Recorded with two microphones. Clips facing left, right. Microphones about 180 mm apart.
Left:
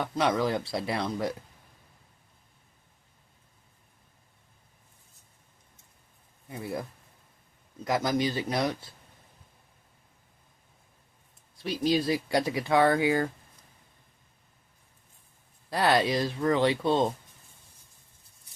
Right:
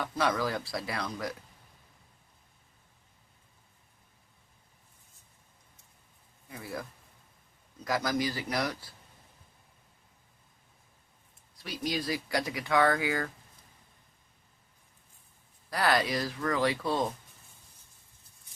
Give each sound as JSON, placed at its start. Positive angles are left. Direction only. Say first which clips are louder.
{"t": 0.0, "sound": "speech", "louder": "left 3 dB", "side_deg": 25}
{"t": 6.5, "sound": "speech", "louder": "left 5 dB", "side_deg": 25}
{"t": 7.9, "sound": "speech", "louder": "left 3 dB", "side_deg": 20}
{"t": 11.5, "sound": "speech", "louder": "left 8 dB", "side_deg": 25}
{"t": 15.7, "sound": "speech", "louder": "left 4 dB", "side_deg": 25}